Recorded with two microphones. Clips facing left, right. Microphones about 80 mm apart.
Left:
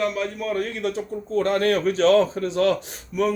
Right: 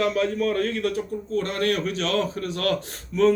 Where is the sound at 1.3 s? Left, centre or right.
Left.